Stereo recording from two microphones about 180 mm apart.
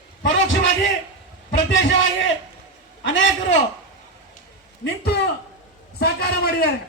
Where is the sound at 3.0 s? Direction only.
85° left.